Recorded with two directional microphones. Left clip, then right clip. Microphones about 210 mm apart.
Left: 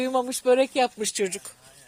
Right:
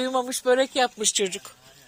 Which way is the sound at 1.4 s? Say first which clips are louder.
Right 1 dB; centre (ahead or behind).